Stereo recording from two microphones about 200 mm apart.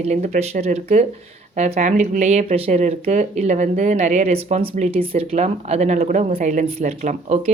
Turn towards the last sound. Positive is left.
turn(degrees=-35)  # may be behind; listen again after turning